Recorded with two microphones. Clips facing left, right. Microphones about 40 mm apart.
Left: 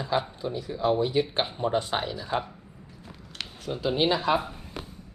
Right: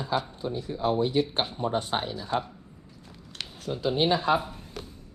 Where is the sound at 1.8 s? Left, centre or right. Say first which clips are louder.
Even; left.